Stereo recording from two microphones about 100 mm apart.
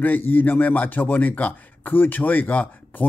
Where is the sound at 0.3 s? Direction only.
20° left (ahead or behind).